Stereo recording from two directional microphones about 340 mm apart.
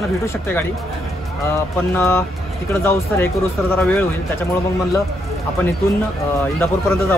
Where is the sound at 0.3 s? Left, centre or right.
Centre.